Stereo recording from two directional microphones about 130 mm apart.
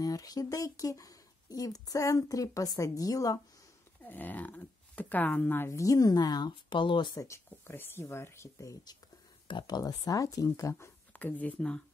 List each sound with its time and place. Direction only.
0.0 s speech: 30° left (ahead or behind)
4.0 s speech: 15° left (ahead or behind); by 7.2 s 35° left (ahead or behind)
7.2 s speech: 20° left (ahead or behind)
9.5 s speech: 35° left (ahead or behind); by 11.8 s 10° left (ahead or behind)